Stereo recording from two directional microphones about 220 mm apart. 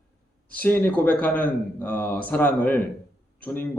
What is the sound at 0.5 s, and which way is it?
Speech, 10° left (ahead or behind).